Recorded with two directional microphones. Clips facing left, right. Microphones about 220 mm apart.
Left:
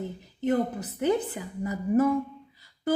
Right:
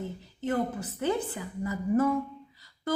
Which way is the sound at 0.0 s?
15° left (ahead or behind).